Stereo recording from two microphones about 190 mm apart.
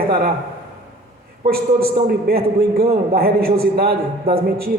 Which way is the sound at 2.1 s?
50° right (ahead or behind).